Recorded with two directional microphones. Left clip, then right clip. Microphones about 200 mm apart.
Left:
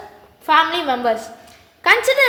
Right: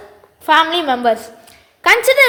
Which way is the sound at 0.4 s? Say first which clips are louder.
Right 3 dB; 40° right (ahead or behind).